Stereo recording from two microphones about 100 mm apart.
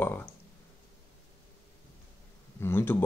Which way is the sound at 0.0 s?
20° left (ahead or behind).